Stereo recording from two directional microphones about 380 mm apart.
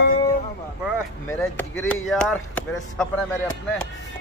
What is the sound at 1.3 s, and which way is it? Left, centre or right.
Speech, centre.